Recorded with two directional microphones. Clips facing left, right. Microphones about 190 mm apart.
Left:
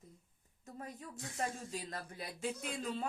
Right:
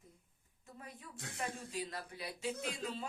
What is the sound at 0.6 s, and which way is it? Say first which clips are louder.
Speech: left 5 dB; 40° left (ahead or behind).